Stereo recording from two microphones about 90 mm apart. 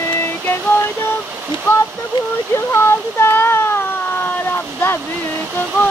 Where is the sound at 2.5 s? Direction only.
25° left (ahead or behind).